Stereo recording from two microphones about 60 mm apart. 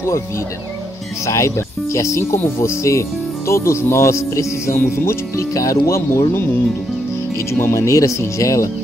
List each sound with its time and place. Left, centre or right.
1.2 s speech: left
5.5 s speech: left
7.5 s speech: left